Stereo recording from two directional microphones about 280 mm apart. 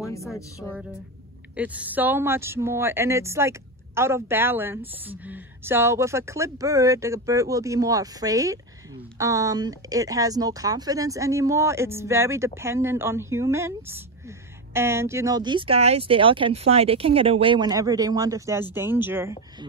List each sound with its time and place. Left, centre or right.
1.6 s speech: centre